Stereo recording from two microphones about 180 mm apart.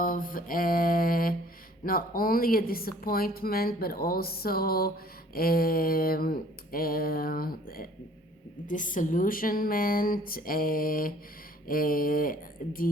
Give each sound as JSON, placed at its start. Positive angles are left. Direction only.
{"t": 0.0, "sound": "speech", "side_deg": 50}